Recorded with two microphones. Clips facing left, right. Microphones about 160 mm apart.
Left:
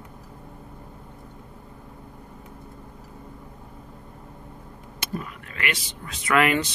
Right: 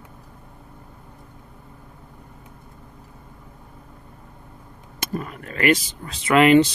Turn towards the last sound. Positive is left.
turn(degrees=-25)  # may be behind; listen again after turning